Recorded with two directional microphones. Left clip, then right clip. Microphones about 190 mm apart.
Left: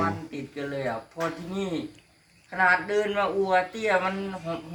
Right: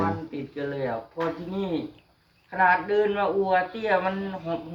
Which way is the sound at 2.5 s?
20° left (ahead or behind).